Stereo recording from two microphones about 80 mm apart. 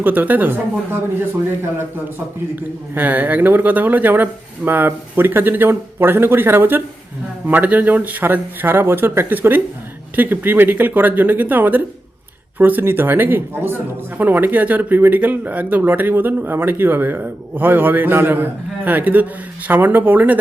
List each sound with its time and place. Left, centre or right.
0.0 s speech: right
2.6 s speech: right